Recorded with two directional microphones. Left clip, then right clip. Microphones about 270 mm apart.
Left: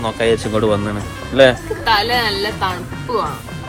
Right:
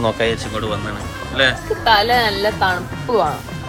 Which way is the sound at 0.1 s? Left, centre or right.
Centre.